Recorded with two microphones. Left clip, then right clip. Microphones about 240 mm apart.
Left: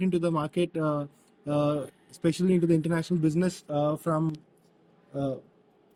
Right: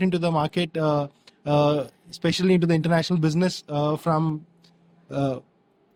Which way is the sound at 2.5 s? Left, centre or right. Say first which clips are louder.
Right 5 dB; right.